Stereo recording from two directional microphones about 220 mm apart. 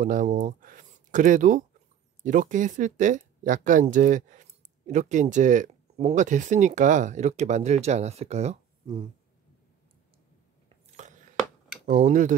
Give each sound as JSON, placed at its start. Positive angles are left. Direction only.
{"t": 0.0, "sound": "speech", "side_deg": -35}
{"t": 11.0, "sound": "a sound", "side_deg": -35}
{"t": 11.8, "sound": "speech", "side_deg": -35}